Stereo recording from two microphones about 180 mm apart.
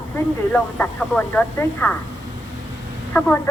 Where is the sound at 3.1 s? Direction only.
10° left (ahead or behind).